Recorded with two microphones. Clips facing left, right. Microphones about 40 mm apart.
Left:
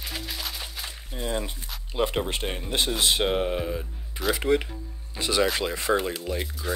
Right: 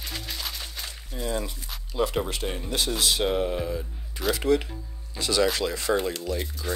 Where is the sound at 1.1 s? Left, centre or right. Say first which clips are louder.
Even; left.